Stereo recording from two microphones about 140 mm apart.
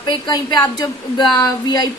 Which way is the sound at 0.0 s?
30° left (ahead or behind).